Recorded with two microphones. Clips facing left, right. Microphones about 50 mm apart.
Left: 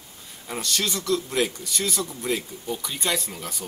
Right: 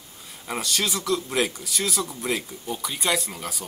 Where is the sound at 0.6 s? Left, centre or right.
Centre.